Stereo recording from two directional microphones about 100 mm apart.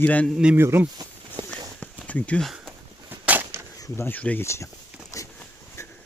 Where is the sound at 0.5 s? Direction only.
25° right (ahead or behind).